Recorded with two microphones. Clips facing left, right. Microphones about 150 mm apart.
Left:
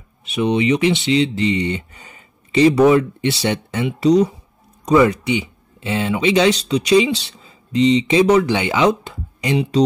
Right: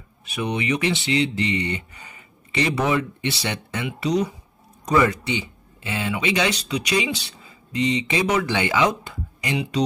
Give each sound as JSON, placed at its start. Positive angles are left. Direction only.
{"t": 0.3, "sound": "speech", "side_deg": 25}
{"t": 4.8, "sound": "speech", "side_deg": 20}